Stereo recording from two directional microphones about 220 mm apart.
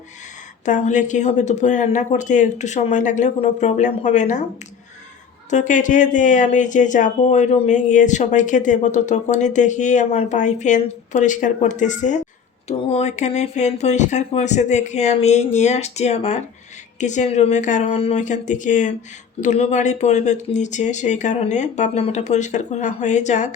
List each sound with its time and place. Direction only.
0.6 s speech: 35° left (ahead or behind)
5.5 s speech: 35° left (ahead or behind)